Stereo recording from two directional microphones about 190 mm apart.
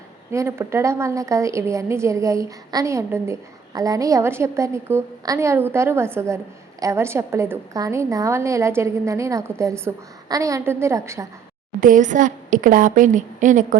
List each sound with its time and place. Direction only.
0.3 s a woman's voice: 15° right (ahead or behind)
11.8 s a woman's voice: 45° right (ahead or behind)